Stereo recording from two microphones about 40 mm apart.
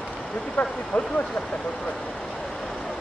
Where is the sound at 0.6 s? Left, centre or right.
Left.